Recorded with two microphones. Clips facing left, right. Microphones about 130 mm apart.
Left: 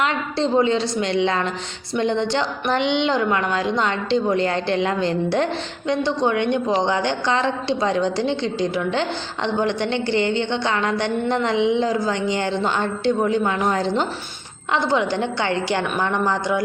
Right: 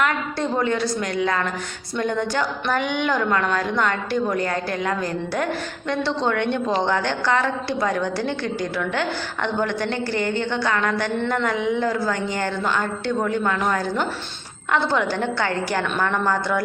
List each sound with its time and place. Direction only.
0.0 s a woman's voice: 25° left (ahead or behind)
5.9 s a woman's voice: 15° left (ahead or behind)